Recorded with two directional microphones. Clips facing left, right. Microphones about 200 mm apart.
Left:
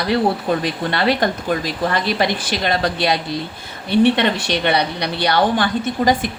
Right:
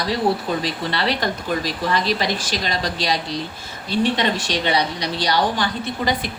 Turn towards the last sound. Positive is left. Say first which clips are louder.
# left 5 dB
turn(degrees=50)  # may be behind; listen again after turning